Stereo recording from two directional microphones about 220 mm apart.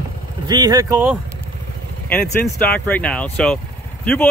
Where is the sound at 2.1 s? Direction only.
10° left (ahead or behind).